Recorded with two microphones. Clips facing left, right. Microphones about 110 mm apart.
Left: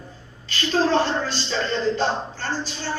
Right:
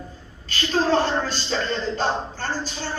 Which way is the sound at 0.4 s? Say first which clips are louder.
Left 1 dB; 45° right (ahead or behind).